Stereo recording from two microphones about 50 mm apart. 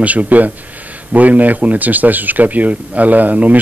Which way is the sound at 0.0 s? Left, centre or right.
Right.